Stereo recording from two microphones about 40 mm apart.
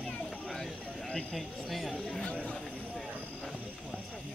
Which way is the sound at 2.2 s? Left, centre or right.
Left.